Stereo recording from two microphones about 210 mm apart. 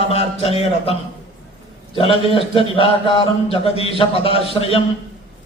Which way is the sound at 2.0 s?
25° left (ahead or behind).